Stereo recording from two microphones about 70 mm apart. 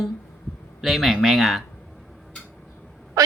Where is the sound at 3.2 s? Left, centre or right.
Right.